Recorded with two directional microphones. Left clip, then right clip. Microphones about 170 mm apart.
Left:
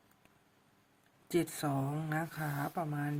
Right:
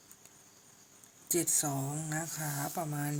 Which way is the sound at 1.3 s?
25° left (ahead or behind).